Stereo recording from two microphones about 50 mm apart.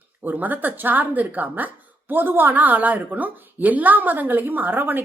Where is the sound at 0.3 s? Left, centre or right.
Right.